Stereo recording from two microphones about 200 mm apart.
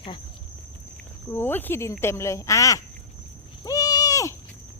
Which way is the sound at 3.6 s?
20° left (ahead or behind).